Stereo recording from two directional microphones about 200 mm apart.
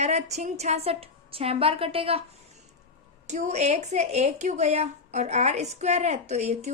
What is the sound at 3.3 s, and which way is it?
A woman's voice, 35° right (ahead or behind).